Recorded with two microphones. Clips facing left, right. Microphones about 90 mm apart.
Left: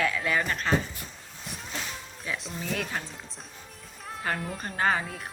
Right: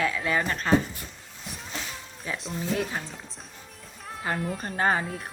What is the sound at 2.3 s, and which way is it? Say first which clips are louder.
Speech: right 3 dB; 35° right (ahead or behind).